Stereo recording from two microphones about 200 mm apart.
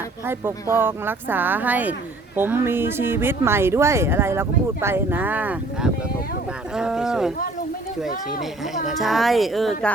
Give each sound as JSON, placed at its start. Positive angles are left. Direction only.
{"t": 0.3, "sound": "speech", "side_deg": -10}